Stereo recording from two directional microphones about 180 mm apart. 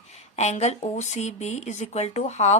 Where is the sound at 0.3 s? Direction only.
40° left (ahead or behind).